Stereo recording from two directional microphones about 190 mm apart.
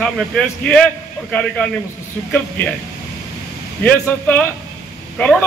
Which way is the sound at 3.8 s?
10° left (ahead or behind).